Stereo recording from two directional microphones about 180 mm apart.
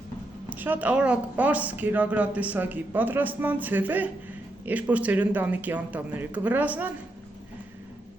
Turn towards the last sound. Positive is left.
turn(degrees=-10)  # may be behind; listen again after turning